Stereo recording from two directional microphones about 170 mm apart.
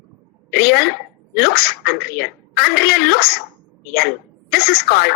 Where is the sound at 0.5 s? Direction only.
65° left (ahead or behind).